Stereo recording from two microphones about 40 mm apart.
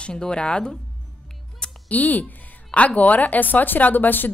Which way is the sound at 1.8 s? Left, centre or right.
Left.